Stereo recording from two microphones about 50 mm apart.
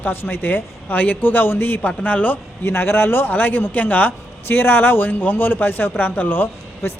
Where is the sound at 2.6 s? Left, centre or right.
Left.